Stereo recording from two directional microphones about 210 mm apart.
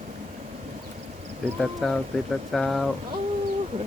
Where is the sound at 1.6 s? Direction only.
Centre (ahead or behind).